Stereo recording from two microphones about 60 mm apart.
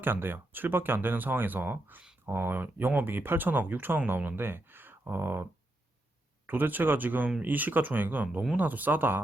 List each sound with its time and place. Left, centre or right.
0.0 s speech: right